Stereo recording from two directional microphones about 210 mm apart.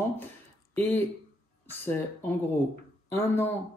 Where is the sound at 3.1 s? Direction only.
10° left (ahead or behind).